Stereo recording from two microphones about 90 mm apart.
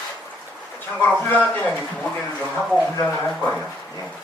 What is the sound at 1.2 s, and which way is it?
Speech, 20° left (ahead or behind).